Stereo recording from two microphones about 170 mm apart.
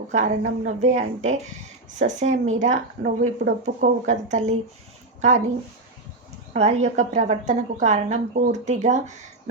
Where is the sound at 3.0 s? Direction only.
60° right (ahead or behind).